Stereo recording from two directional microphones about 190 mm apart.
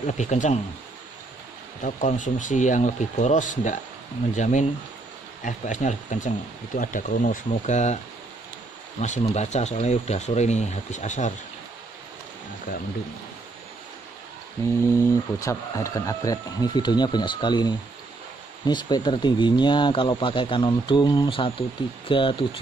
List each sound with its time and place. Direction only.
0.0 s speech: 40° left (ahead or behind)
1.8 s speech: 40° left (ahead or behind)
9.0 s speech: 35° left (ahead or behind)
15.4 s speech: 15° left (ahead or behind)